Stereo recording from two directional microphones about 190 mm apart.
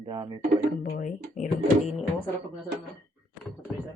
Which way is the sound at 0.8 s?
50° left (ahead or behind).